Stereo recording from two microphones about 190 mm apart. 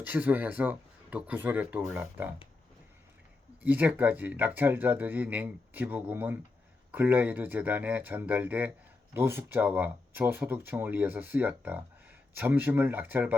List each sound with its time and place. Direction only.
0.0 s speech: 10° right (ahead or behind)
3.6 s speech: 10° right (ahead or behind)